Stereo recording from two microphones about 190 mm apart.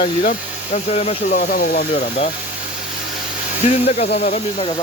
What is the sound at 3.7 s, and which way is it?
Speech, 35° left (ahead or behind).